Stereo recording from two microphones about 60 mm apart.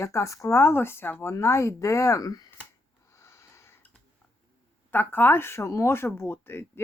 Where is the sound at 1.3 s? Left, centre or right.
Left.